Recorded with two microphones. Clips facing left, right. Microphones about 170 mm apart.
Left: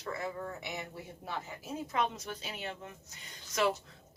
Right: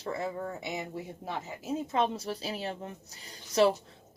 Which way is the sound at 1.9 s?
30° right (ahead or behind).